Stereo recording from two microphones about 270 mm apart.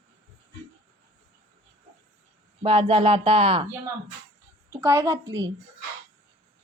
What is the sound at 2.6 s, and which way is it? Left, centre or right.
Speech, centre.